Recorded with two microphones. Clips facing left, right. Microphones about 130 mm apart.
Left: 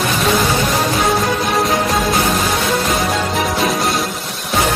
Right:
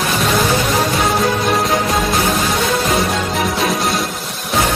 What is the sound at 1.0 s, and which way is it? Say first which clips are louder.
Music: right 1 dB; centre (ahead or behind).